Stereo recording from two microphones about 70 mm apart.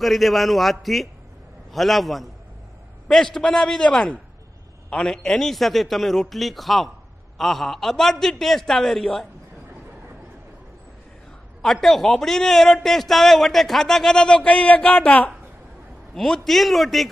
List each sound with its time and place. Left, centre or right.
0.0 s a man's voice: centre
11.6 s a man's voice: centre